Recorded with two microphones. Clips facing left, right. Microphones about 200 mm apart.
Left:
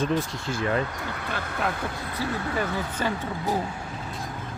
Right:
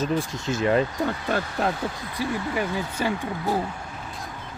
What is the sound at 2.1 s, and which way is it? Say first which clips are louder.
Speech: right 1 dB; 10° right (ahead or behind).